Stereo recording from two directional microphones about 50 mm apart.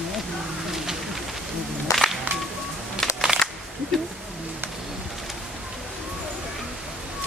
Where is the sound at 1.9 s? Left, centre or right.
Left.